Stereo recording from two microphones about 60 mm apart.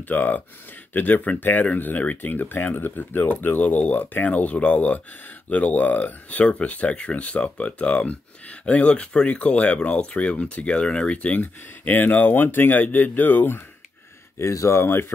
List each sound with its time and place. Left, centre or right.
0.1 s speech: left
11.4 s speech: left
14.4 s speech: left